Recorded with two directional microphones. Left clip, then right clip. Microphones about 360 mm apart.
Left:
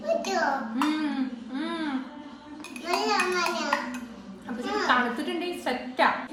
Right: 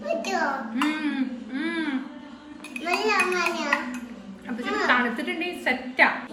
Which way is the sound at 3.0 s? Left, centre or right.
Centre.